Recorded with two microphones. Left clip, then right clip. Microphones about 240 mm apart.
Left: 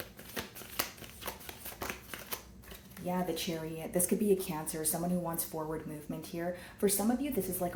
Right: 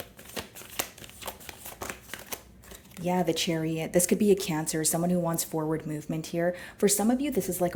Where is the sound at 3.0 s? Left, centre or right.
Right.